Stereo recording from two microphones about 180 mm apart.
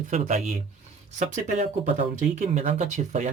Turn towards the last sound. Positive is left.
turn(degrees=-40)  # may be behind; listen again after turning